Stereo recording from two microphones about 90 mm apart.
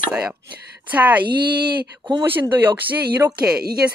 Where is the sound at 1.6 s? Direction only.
55° right (ahead or behind).